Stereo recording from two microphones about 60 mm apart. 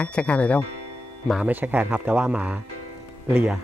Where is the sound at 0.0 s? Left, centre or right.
Centre.